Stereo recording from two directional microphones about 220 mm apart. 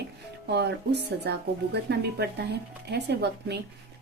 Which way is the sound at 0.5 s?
50° right (ahead or behind).